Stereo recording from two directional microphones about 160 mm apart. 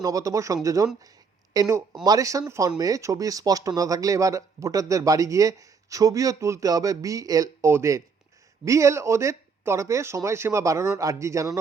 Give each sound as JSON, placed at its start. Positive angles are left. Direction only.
{"t": 0.0, "sound": "speech", "side_deg": -20}